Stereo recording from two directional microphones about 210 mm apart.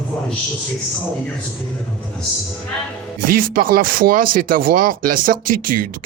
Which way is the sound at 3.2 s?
40° right (ahead or behind).